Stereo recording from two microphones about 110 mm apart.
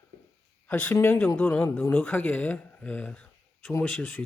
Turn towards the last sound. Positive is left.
turn(degrees=10)  # may be behind; listen again after turning